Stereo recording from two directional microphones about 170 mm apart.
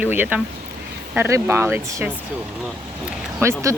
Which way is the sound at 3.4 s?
15° right (ahead or behind).